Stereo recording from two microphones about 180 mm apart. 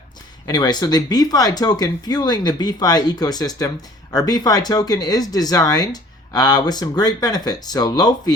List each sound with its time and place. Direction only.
0.4 s speech: 20° left (ahead or behind)